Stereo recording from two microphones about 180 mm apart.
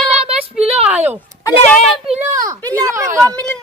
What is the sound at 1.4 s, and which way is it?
Speech, 10° left (ahead or behind).